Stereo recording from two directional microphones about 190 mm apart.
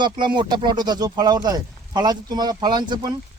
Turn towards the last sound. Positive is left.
turn(degrees=-20)  # may be behind; listen again after turning